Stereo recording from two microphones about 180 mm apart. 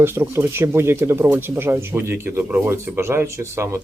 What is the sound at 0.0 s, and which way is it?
Speech, 15° right (ahead or behind).